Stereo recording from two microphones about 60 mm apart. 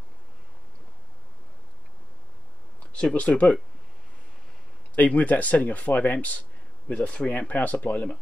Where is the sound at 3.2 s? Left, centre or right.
Left.